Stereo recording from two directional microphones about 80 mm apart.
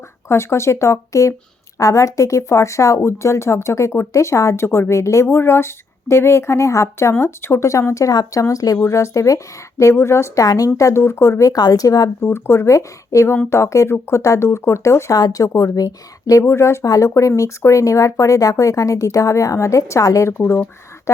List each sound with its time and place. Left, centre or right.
0.3 s speech: left
10.4 s speech: left
10.8 s speech: left
12.2 s speech: left
15.2 s speech: left
16.4 s speech: left